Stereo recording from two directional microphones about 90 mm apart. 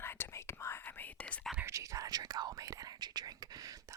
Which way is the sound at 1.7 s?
35° right (ahead or behind).